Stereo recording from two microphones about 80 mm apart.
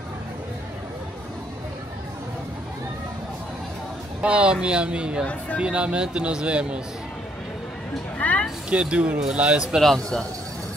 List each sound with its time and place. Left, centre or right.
4.2 s a man's voice: centre
5.2 s a woman's voice: centre
5.6 s a man's voice: centre
8.2 s a sound: centre
8.6 s a man's voice: centre
9.8 s speech: centre